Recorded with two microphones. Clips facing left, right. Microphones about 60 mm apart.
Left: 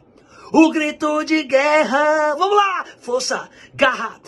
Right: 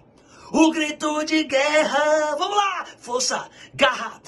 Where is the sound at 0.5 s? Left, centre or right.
Left.